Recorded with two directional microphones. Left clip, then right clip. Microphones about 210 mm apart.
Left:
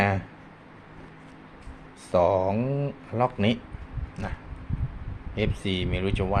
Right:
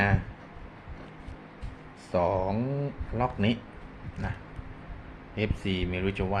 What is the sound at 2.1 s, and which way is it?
Speech, 35° left (ahead or behind).